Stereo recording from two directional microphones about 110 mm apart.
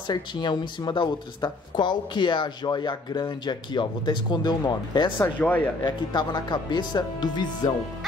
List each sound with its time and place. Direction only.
0.0 s speech: 40° left (ahead or behind)
5.4 s speech: 15° left (ahead or behind)
5.8 s speech: 40° left (ahead or behind)